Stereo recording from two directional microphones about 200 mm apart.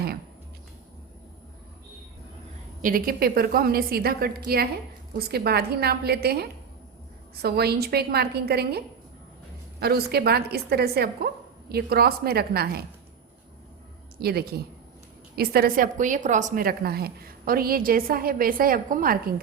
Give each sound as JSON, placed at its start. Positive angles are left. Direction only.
{"t": 2.8, "sound": "a woman's voice", "side_deg": -45}
{"t": 9.8, "sound": "a woman's voice", "side_deg": -50}
{"t": 14.2, "sound": "a woman's voice", "side_deg": -50}